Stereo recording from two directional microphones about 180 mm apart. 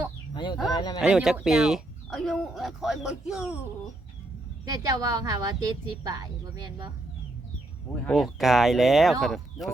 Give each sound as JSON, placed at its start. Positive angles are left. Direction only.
{"t": 0.3, "sound": "a sound", "side_deg": 25}
{"t": 0.7, "sound": "speech", "side_deg": 25}
{"t": 1.0, "sound": "speech", "side_deg": 0}
{"t": 4.6, "sound": "a woman's voice", "side_deg": -20}
{"t": 8.0, "sound": "speech", "side_deg": 0}